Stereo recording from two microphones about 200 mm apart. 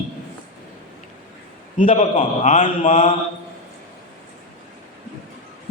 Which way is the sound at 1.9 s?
30° left (ahead or behind).